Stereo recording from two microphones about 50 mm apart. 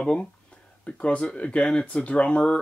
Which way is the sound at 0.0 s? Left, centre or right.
Centre.